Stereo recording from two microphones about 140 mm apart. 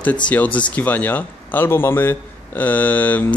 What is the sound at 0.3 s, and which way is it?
Speech, 10° left (ahead or behind).